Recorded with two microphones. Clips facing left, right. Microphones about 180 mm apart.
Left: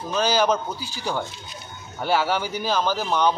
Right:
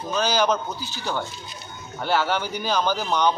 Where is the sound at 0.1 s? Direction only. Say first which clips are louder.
Left 1 dB; 5° left (ahead or behind).